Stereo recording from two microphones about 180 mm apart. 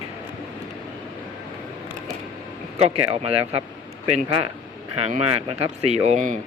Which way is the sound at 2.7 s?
35° right (ahead or behind).